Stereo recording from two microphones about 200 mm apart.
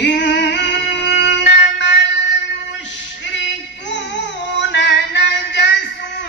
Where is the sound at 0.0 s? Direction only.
60° left (ahead or behind).